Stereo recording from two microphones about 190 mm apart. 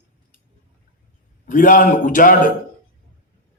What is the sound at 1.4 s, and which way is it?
A man's voice, 45° left (ahead or behind).